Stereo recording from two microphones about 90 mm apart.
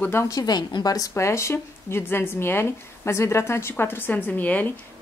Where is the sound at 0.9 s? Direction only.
30° left (ahead or behind).